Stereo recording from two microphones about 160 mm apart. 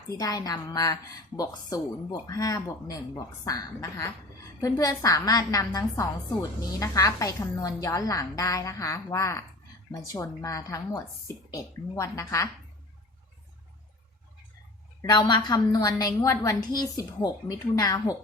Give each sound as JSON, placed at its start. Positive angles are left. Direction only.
{"t": 0.1, "sound": "a woman's voice", "side_deg": 25}
{"t": 15.1, "sound": "a woman's voice", "side_deg": 25}